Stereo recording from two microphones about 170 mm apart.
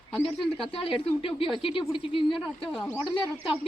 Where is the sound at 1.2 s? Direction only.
30° left (ahead or behind).